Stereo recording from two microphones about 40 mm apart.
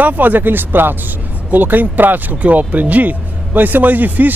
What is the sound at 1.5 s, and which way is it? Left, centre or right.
Speech, right.